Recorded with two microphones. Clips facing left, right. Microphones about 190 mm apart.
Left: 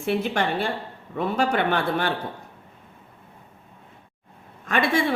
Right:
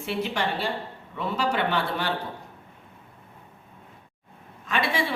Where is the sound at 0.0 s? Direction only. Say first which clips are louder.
Left 4 dB; 50° left (ahead or behind).